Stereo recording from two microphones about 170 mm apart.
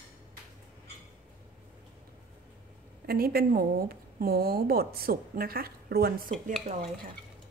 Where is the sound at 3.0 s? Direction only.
60° right (ahead or behind).